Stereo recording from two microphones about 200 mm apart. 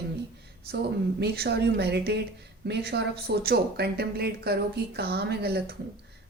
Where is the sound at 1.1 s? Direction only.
55° right (ahead or behind).